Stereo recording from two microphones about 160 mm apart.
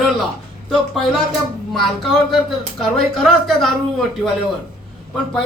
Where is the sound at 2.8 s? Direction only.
5° left (ahead or behind).